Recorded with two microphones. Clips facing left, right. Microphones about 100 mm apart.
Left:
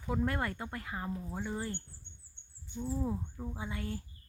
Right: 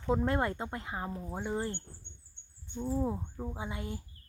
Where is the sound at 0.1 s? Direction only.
25° right (ahead or behind).